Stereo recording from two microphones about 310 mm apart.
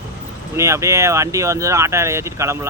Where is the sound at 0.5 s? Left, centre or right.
Centre.